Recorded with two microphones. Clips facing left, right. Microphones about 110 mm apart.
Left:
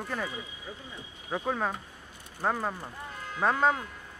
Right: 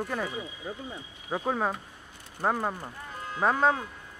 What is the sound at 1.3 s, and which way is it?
Speech, 10° right (ahead or behind).